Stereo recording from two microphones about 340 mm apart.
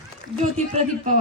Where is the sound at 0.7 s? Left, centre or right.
Right.